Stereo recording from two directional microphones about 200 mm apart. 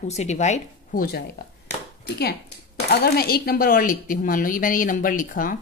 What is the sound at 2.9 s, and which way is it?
A woman's voice, 50° left (ahead or behind).